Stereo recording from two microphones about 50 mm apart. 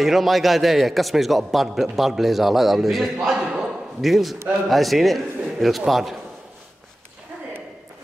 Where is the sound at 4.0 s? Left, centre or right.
Centre.